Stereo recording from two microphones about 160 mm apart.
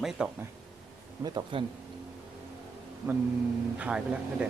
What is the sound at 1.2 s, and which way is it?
Speech, 25° right (ahead or behind).